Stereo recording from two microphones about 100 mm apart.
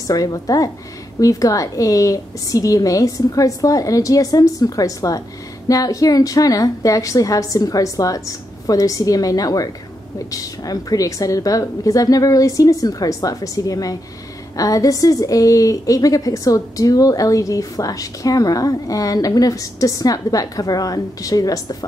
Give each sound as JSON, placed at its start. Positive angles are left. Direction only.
{"t": 0.0, "sound": "a woman's voice", "side_deg": 35}